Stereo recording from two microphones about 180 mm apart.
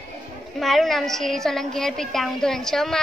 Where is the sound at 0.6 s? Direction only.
Centre (ahead or behind).